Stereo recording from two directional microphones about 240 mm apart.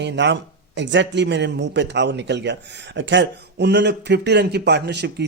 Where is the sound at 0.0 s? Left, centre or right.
Right.